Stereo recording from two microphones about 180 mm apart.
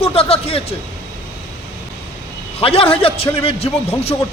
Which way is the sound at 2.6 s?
30° left (ahead or behind).